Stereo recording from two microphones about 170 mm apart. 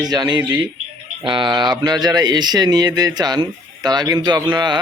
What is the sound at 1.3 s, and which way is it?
A man's voice, 25° right (ahead or behind).